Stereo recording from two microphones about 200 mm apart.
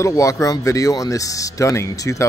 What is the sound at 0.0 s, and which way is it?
Speech, 15° left (ahead or behind).